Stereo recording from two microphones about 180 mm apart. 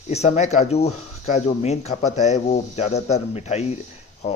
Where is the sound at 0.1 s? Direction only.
40° left (ahead or behind).